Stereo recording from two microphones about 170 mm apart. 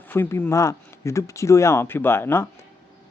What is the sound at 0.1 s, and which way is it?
Speech, 15° left (ahead or behind).